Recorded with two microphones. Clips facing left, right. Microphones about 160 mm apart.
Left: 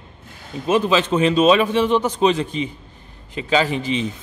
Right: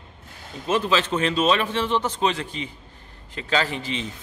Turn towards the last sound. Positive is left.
turn(degrees=15)  # may be behind; listen again after turning